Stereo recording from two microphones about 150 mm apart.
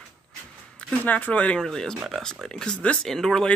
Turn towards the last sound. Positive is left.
turn(degrees=5)  # may be behind; listen again after turning